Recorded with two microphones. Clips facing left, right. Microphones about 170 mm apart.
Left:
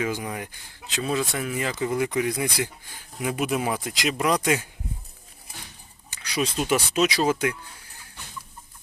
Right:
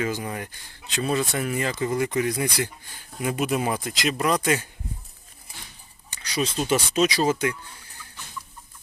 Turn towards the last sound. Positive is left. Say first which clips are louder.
# even
turn(degrees=5)  # may be behind; listen again after turning